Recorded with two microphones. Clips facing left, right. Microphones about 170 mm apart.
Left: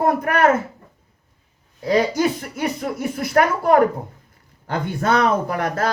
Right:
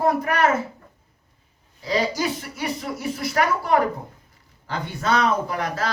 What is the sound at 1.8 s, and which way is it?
Speech, 50° left (ahead or behind).